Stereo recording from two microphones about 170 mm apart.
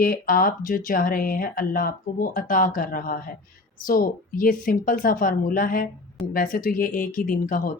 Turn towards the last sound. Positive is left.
turn(degrees=50)  # may be behind; listen again after turning